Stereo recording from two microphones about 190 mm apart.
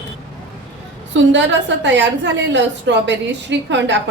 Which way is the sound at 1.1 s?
75° right (ahead or behind).